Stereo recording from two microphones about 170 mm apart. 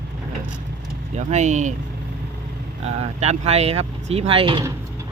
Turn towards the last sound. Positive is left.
turn(degrees=-30)  # may be behind; listen again after turning